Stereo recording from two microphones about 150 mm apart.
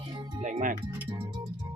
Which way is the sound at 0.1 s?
30° right (ahead or behind).